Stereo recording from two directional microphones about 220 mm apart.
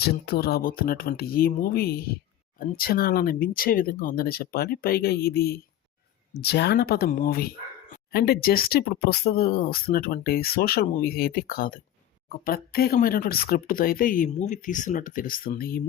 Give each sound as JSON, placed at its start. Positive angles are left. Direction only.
{"t": 0.0, "sound": "speech", "side_deg": 45}